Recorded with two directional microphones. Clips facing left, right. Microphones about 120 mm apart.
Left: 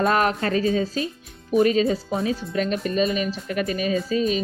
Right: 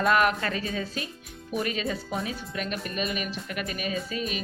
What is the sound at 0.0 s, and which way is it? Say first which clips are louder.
Speech: left 3 dB; 35° left (ahead or behind).